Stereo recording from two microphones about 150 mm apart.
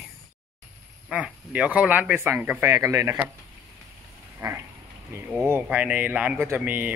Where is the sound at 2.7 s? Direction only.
20° right (ahead or behind).